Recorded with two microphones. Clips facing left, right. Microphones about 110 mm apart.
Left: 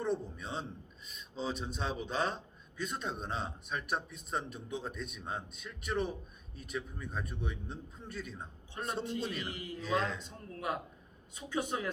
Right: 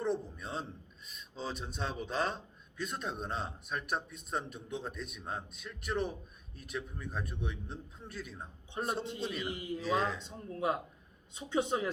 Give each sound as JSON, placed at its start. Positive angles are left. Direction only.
{"t": 0.0, "sound": "a man's voice", "side_deg": 0}
{"t": 10.2, "sound": "speech", "side_deg": -25}